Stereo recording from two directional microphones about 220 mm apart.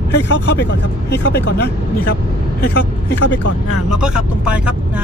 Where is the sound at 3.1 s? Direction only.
55° left (ahead or behind).